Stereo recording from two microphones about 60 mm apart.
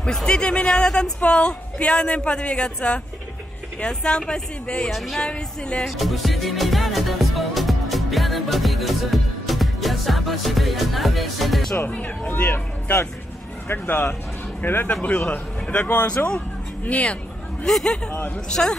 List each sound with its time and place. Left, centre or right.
0.0 s speech: centre
5.2 s speech: centre
5.9 s music: centre
11.9 s speech: left
15.0 s speech: left
17.6 s speech: centre
18.1 s speech: left
18.5 s speech: centre